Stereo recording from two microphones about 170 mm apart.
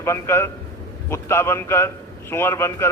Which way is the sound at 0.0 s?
15° left (ahead or behind).